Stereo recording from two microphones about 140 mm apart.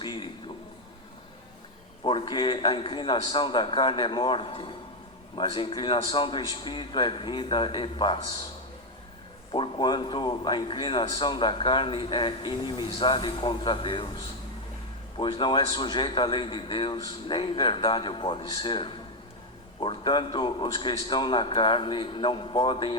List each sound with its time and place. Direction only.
0.0 s a man's voice: 30° left (ahead or behind)
2.0 s a man's voice: 35° left (ahead or behind)
9.5 s a man's voice: 35° left (ahead or behind)
15.2 s a man's voice: 35° left (ahead or behind)